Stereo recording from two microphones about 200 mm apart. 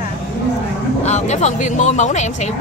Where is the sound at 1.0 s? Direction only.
35° left (ahead or behind).